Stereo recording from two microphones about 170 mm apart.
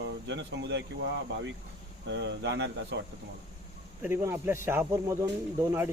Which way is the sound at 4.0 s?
15° right (ahead or behind).